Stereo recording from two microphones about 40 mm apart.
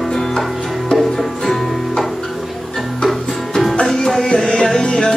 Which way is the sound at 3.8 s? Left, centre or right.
Centre.